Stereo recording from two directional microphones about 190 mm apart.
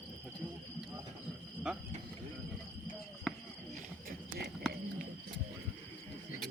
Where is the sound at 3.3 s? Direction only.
Centre (ahead or behind).